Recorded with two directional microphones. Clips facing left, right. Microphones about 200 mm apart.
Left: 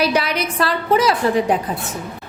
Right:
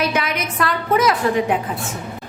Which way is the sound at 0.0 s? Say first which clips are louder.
Left 3 dB; 35° left (ahead or behind).